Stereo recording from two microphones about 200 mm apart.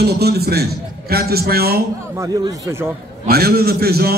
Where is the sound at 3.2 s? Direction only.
50° right (ahead or behind).